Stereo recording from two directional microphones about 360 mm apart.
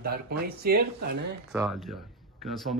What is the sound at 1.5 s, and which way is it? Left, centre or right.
Speech, centre.